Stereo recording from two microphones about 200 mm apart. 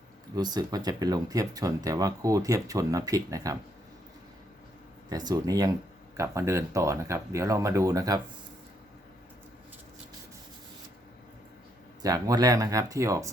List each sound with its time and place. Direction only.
0.3 s speech: 20° right (ahead or behind)
5.0 s speech: 20° right (ahead or behind)
12.0 s speech: 15° right (ahead or behind)